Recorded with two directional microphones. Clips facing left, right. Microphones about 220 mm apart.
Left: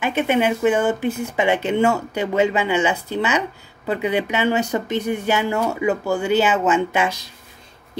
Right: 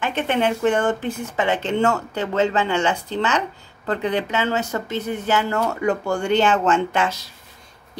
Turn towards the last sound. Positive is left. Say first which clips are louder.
# left 1 dB
turn(degrees=10)  # may be behind; listen again after turning